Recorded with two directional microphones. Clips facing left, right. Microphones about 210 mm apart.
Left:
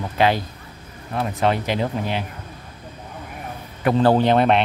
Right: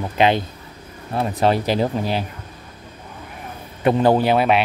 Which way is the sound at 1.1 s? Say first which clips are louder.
Right 2 dB; 35° right (ahead or behind).